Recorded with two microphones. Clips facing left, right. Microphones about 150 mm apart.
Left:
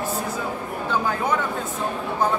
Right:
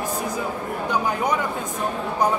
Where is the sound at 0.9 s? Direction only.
15° right (ahead or behind).